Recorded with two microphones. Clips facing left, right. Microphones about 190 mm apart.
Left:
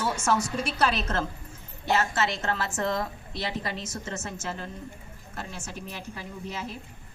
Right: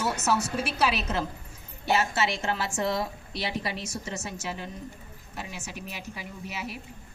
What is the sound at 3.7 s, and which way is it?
Speech, 20° left (ahead or behind).